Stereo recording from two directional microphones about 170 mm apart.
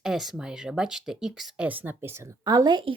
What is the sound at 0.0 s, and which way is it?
Speech, centre (ahead or behind).